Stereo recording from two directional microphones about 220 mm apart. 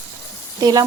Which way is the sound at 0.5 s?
15° right (ahead or behind).